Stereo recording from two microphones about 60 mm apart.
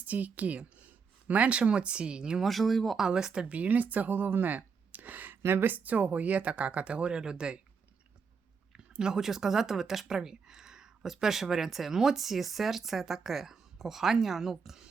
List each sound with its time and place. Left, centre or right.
0.0 s speech: right
2.4 s speech: centre
3.1 s speech: centre
3.5 s speech: right
8.7 s speech: centre